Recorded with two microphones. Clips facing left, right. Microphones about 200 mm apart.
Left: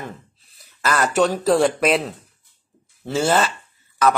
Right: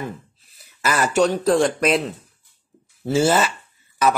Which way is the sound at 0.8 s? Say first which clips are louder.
Even; centre (ahead or behind).